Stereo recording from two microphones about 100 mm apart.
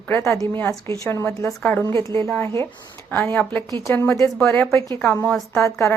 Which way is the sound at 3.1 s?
20° left (ahead or behind).